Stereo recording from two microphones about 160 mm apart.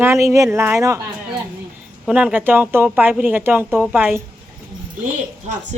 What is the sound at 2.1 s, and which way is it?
Speech, 5° right (ahead or behind).